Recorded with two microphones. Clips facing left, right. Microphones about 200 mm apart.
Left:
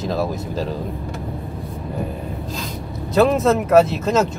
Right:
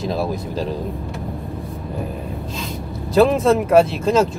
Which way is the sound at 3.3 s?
30° right (ahead or behind).